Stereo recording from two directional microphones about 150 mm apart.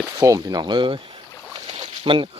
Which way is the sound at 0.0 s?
20° right (ahead or behind).